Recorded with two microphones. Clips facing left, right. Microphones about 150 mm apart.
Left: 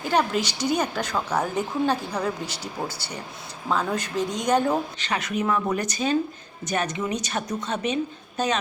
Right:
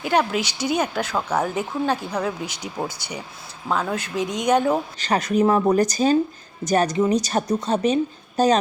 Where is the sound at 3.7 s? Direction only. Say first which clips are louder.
Right 1 dB; 5° right (ahead or behind).